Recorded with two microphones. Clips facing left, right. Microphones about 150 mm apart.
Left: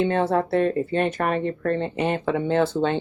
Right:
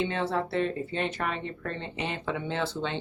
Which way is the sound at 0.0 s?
50° left (ahead or behind).